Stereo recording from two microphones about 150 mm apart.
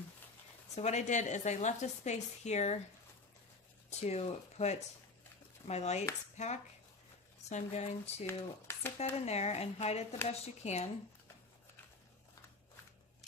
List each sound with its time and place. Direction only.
0.7 s a woman's voice: 50° left (ahead or behind)
3.9 s a woman's voice: 45° left (ahead or behind)
8.3 s speech: 15° left (ahead or behind)
9.2 s a woman's voice: 45° left (ahead or behind)